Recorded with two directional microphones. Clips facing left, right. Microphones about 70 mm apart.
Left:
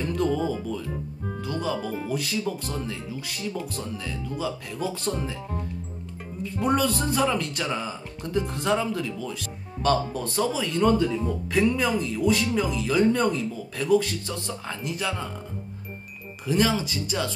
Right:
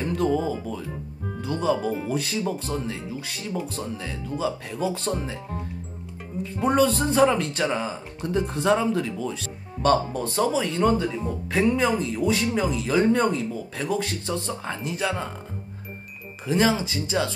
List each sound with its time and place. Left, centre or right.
0.0 s music: centre
1.4 s speech: right
6.4 s speech: right
16.4 s speech: right